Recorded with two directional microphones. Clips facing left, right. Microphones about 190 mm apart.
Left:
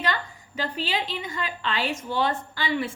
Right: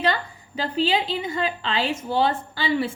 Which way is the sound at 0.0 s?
30° right (ahead or behind).